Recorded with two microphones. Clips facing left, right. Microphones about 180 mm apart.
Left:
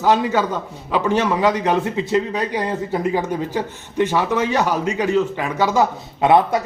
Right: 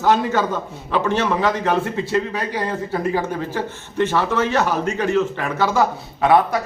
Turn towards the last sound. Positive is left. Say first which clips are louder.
# left 1 dB
turn(degrees=20)  # may be behind; listen again after turning